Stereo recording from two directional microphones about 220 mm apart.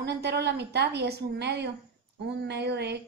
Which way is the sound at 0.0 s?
50° right (ahead or behind).